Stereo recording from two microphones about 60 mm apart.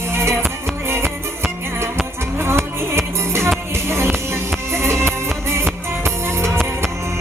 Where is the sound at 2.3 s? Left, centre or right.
Right.